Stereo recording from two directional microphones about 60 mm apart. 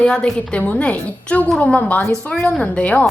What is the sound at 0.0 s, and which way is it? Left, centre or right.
A woman's voice, centre.